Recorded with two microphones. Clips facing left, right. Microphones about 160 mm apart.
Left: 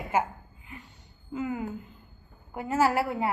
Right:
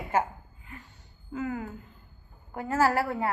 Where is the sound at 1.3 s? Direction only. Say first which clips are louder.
Left 1 dB; 20° left (ahead or behind).